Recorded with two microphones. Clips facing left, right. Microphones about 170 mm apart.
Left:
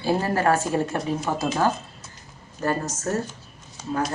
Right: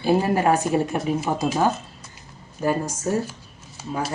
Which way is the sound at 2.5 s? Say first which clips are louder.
Right 2 dB; 10° right (ahead or behind).